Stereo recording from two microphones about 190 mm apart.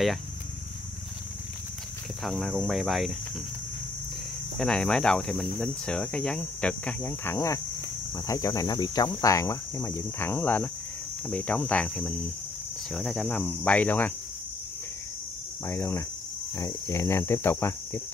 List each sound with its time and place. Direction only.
2.2 s speech: centre (ahead or behind)
4.6 s speech: 5° left (ahead or behind)
8.3 s cricket: 15° left (ahead or behind)
15.6 s cricket: 15° left (ahead or behind)